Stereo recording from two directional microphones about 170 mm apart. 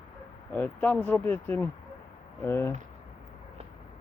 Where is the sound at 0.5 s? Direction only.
10° left (ahead or behind).